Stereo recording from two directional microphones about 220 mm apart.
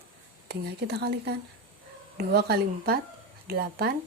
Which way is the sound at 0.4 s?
45° right (ahead or behind).